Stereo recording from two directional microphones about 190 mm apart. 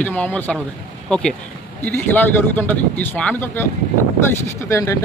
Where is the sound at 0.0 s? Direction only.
5° left (ahead or behind).